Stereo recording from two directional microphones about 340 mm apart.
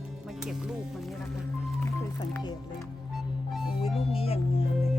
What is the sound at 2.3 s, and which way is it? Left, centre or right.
Speech, centre.